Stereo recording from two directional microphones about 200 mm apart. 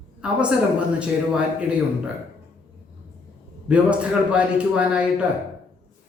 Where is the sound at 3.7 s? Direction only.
5° right (ahead or behind).